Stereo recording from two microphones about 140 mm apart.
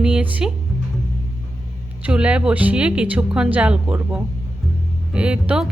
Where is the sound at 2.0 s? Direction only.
10° right (ahead or behind).